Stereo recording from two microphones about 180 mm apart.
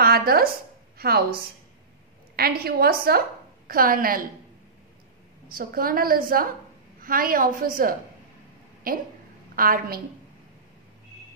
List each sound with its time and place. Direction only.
0.0 s a woman's voice: 60° right (ahead or behind)
5.5 s a woman's voice: 55° right (ahead or behind)